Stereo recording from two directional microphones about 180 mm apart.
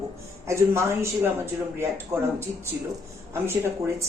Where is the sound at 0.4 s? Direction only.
15° right (ahead or behind).